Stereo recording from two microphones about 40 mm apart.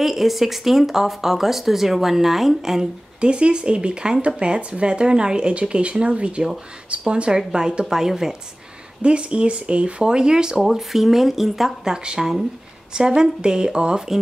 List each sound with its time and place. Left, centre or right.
0.0 s speech: centre
3.2 s speech: right
7.3 s a woman's voice: centre
9.0 s speech: right
10.6 s speech: centre
11.8 s a woman's voice: centre